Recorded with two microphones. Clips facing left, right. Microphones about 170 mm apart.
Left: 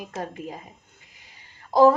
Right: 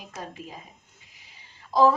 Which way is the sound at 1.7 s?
55° left (ahead or behind).